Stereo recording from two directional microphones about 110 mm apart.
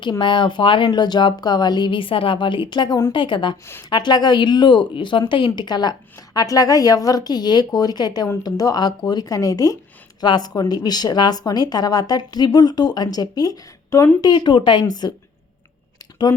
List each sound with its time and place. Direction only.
0.0 s speech: 45° left (ahead or behind); by 14.1 s 30° left (ahead or behind)
14.2 s speech: 40° left (ahead or behind)